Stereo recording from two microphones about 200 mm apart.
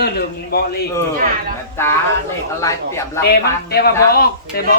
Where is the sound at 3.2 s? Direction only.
50° left (ahead or behind).